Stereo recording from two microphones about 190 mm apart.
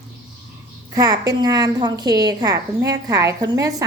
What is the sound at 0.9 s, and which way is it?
A woman's voice, 20° right (ahead or behind).